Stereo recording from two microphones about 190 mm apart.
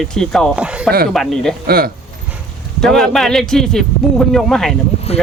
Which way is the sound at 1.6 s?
55° right (ahead or behind).